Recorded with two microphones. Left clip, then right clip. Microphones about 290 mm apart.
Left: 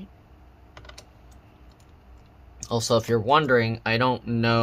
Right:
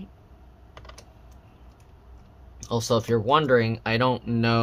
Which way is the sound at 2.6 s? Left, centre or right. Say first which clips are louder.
Left 1 dB; centre.